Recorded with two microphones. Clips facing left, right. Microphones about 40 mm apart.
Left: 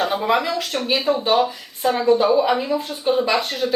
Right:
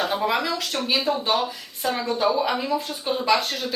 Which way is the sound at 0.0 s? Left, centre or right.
Centre.